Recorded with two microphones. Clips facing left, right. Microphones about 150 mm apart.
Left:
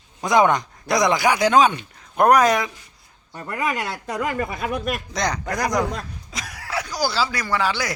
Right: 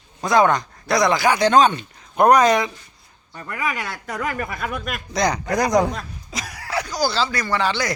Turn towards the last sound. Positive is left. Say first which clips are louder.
# right 1 dB
turn(degrees=10)  # may be behind; listen again after turning